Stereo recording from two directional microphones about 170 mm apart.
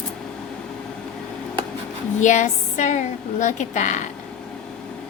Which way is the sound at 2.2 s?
45° left (ahead or behind).